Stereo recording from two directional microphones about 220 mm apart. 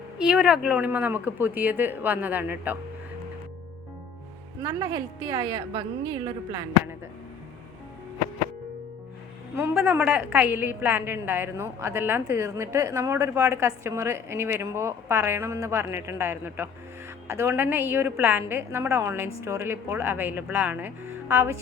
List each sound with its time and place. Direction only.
0.2 s a woman's voice: 5° right (ahead or behind)
4.6 s a woman's voice: 20° right (ahead or behind)
9.6 s a woman's voice: 5° right (ahead or behind)